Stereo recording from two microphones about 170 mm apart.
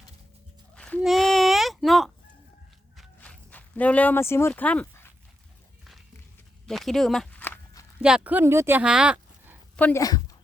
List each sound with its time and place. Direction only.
0.8 s a sound: 5° left (ahead or behind)
3.2 s walk: 10° left (ahead or behind)
6.7 s walk: centre (ahead or behind)
8.0 s speech: 5° right (ahead or behind)
9.7 s a woman's voice: 10° left (ahead or behind)
10.0 s a woman's voice: 20° left (ahead or behind)